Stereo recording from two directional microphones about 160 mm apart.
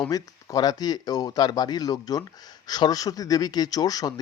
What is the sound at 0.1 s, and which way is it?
Speech, 25° left (ahead or behind).